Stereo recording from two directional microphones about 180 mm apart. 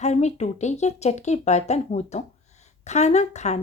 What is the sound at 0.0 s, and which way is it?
Speech, 40° left (ahead or behind).